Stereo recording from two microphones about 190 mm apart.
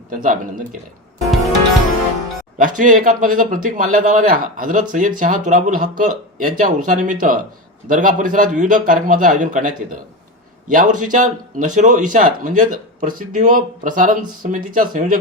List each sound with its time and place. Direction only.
0.1 s speech: 45° right (ahead or behind)
2.6 s speech: 45° right (ahead or behind)